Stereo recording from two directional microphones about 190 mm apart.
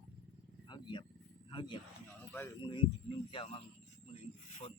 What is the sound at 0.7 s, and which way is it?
Vehicle, 25° left (ahead or behind).